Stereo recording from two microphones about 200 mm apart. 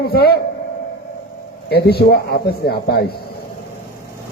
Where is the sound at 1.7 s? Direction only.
55° left (ahead or behind).